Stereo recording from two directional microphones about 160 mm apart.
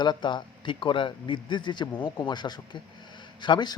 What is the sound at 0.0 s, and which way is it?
Speech, 30° left (ahead or behind).